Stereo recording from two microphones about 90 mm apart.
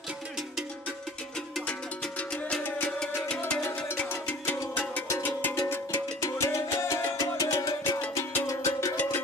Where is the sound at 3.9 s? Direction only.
15° left (ahead or behind).